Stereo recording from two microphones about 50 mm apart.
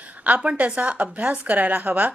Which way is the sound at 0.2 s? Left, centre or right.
Right.